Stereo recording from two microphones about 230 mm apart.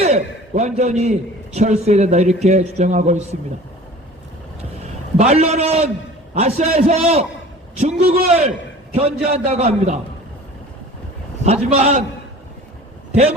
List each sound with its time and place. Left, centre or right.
0.0 s a sound: right
1.5 s a man's voice: right
5.1 s a man's voice: right
11.4 s a man's voice: right